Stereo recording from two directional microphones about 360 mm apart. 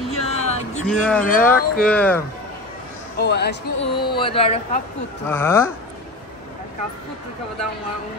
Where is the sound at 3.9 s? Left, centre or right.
Centre.